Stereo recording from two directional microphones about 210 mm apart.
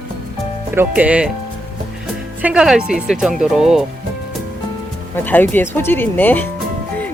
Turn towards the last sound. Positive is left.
turn(degrees=10)  # may be behind; listen again after turning